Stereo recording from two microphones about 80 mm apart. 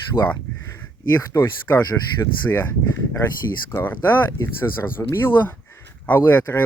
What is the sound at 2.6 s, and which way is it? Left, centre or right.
Speech, left.